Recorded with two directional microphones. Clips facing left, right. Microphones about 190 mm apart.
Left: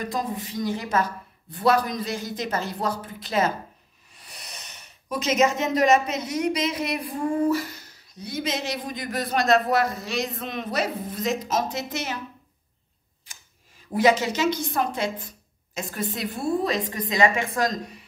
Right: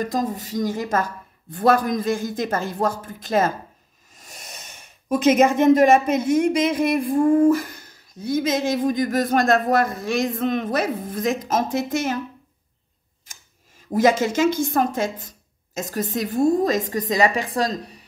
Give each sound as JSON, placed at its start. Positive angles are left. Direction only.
{"t": 0.0, "sound": "speech", "side_deg": -45}
{"t": 13.9, "sound": "speech", "side_deg": -45}